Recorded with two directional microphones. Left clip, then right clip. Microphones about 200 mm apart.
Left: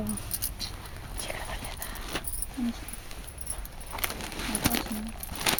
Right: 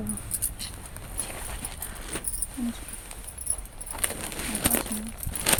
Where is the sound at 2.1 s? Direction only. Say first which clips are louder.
Left 2 dB; 40° left (ahead or behind).